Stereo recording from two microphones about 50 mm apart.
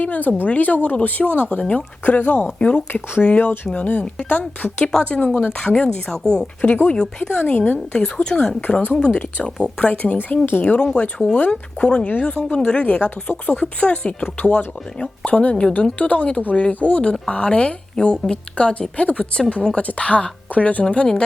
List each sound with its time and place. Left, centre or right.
0.0 s a woman's voice: left
3.2 s a woman's voice: centre
3.8 s speech: left
4.8 s a woman's voice: centre
5.0 s a woman's voice: left
8.6 s speech: left
9.0 s a woman's voice: left
9.8 s a woman's voice: left